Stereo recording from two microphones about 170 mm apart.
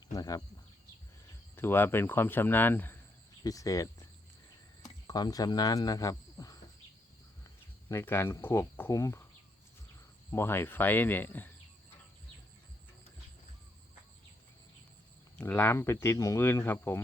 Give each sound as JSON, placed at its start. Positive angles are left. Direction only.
{"t": 0.1, "sound": "a sound", "side_deg": 20}
{"t": 1.5, "sound": "speech", "side_deg": 15}
{"t": 7.9, "sound": "speech", "side_deg": 15}
{"t": 10.3, "sound": "speech", "side_deg": 15}
{"t": 15.4, "sound": "speech", "side_deg": 10}